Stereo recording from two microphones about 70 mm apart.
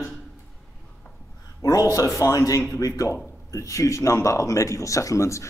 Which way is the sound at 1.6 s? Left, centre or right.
Left.